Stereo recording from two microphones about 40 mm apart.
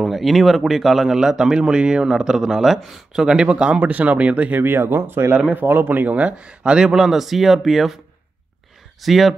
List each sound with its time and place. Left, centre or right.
0.0 s speech: centre; by 2.0 s right
2.0 s speech: centre
3.1 s speech: right
3.9 s speech: right
4.6 s speech: right
5.5 s speech: right
6.0 s speech: right
6.3 s speech: right
7.0 s speech: centre
9.0 s speech: centre